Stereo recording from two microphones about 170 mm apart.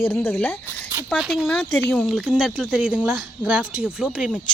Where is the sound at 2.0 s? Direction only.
5° right (ahead or behind).